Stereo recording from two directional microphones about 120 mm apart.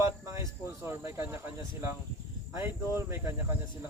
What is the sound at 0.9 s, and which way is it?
Speech, 20° right (ahead or behind).